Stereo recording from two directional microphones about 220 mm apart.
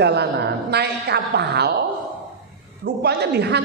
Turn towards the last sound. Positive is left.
turn(degrees=-50)  # may be behind; listen again after turning